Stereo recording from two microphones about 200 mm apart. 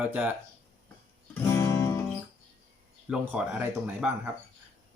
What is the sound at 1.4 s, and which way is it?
Music, 15° left (ahead or behind).